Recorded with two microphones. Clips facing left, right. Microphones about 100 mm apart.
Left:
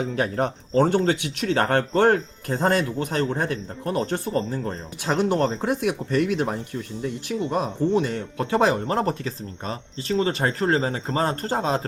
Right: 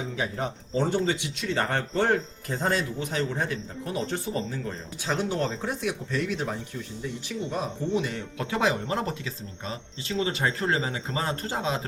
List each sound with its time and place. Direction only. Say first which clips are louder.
0.0 s speech: left 6 dB; 60° left (ahead or behind)
8.0 s speech: left 5 dB; 40° left (ahead or behind)